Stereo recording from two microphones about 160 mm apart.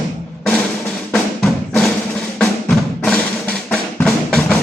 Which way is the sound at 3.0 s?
10° left (ahead or behind).